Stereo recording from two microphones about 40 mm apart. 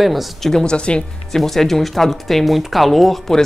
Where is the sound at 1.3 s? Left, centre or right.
Centre.